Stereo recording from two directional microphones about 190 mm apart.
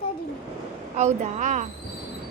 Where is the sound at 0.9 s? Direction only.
40° right (ahead or behind).